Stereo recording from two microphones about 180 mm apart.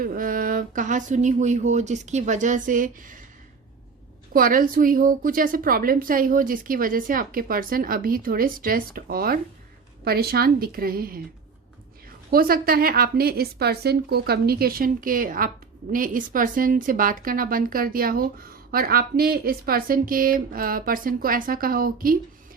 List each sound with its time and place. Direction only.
0.0 s a woman's voice: 50° right (ahead or behind)
4.4 s a woman's voice: 50° right (ahead or behind)
12.3 s a woman's voice: 55° right (ahead or behind)